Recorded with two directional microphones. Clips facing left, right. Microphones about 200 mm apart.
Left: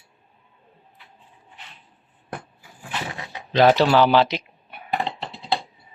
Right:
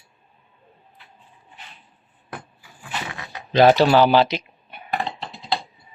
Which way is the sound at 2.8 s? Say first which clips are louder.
Left 1 dB; 30° left (ahead or behind).